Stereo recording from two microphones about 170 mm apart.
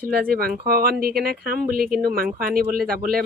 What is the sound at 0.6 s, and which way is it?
Speech, 60° right (ahead or behind).